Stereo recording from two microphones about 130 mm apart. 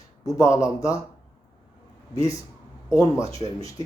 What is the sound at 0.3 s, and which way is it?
Speech, 25° left (ahead or behind).